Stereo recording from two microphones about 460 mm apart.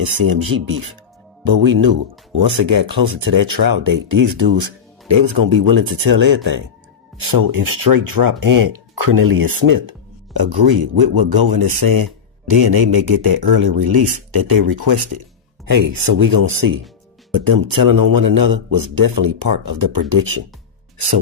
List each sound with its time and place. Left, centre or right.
0.0 s speech: right